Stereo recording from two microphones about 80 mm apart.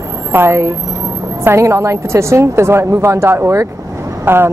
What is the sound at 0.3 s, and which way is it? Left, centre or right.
A woman's voice, right.